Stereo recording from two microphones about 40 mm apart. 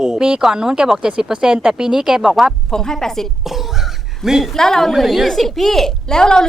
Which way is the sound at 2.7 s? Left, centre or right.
Centre.